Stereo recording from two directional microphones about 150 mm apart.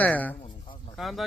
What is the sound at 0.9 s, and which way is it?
Speech, centre (ahead or behind).